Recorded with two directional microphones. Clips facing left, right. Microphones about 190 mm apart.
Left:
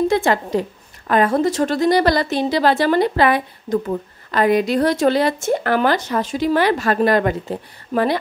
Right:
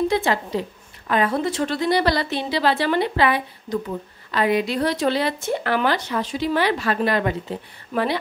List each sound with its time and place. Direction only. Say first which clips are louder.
0.1 s a woman's voice: left 4 dB; 50° left (ahead or behind)